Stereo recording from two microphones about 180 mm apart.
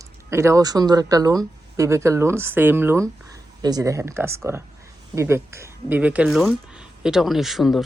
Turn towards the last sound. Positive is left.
turn(degrees=0)  # may be behind; listen again after turning